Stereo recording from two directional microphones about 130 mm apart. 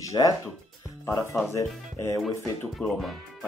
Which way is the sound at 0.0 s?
25° left (ahead or behind).